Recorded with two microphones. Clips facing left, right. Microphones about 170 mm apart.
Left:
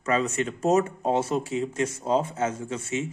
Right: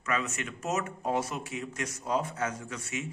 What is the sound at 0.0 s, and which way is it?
A man's voice, 30° left (ahead or behind).